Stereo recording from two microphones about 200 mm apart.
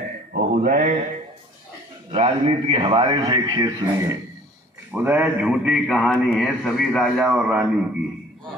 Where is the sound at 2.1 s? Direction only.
30° right (ahead or behind).